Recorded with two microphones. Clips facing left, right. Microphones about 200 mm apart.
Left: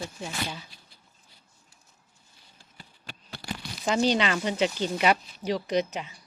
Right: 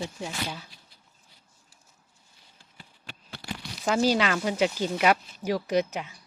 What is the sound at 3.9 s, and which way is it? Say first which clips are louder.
Speech: right 1 dB; 5° right (ahead or behind).